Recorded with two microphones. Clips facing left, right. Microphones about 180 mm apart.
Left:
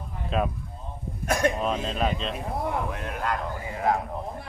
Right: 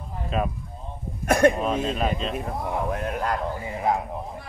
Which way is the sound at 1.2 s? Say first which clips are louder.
Right 6 dB; 60° right (ahead or behind).